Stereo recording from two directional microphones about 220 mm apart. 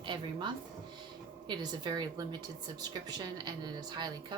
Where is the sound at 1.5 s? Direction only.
20° right (ahead or behind).